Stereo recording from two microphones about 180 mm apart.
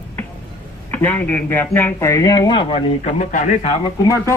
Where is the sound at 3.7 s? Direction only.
20° left (ahead or behind).